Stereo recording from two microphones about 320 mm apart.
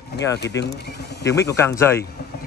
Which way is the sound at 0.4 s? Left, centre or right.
Left.